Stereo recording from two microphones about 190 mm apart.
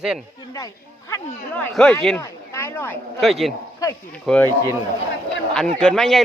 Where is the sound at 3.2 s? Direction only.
Centre (ahead or behind).